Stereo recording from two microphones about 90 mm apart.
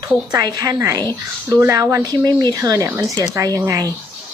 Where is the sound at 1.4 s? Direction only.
30° right (ahead or behind).